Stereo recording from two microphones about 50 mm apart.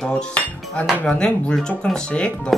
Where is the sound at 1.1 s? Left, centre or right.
Centre.